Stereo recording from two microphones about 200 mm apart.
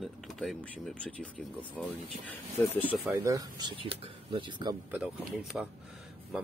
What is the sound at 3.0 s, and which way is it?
Speech, 15° right (ahead or behind).